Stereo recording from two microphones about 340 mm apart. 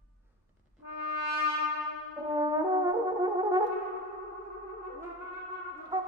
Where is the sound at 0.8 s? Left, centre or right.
Left.